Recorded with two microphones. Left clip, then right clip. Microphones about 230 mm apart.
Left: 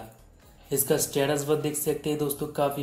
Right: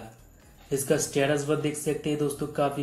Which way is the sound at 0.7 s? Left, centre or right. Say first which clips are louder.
Even; left.